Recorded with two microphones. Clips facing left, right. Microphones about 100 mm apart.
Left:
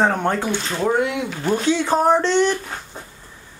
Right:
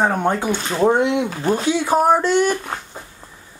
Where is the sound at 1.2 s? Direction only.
40° right (ahead or behind).